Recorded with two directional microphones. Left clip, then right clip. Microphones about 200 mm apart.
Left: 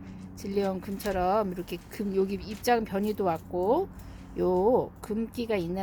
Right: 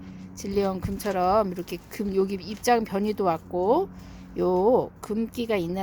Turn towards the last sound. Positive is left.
turn(degrees=-20)  # may be behind; listen again after turning